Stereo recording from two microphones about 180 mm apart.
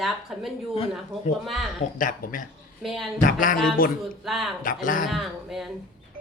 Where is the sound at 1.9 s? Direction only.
50° left (ahead or behind).